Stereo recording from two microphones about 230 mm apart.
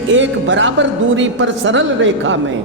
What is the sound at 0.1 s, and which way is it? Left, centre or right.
A man's voice, right.